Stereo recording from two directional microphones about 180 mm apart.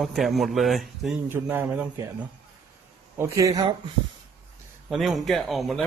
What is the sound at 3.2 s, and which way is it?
Speech, 15° right (ahead or behind).